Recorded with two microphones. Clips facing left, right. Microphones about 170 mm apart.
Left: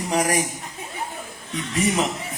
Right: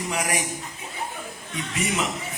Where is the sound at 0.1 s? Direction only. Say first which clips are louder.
Left 7 dB; 35° left (ahead or behind).